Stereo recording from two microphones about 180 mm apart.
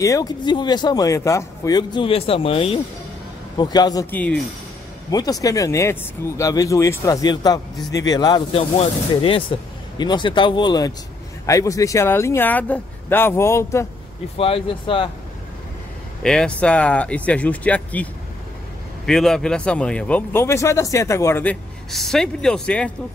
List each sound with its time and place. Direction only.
0.0 s speech: 20° left (ahead or behind)
4.1 s speech: 10° left (ahead or behind)
5.1 s speech: 20° left (ahead or behind)
14.4 s speech: 30° left (ahead or behind)
16.2 s speech: 5° left (ahead or behind)
19.0 s speech: 5° left (ahead or behind)